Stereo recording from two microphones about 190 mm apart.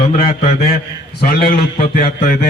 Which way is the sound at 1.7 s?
45° left (ahead or behind).